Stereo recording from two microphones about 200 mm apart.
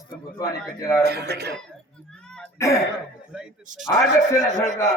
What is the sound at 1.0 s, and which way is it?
Speech, 55° right (ahead or behind).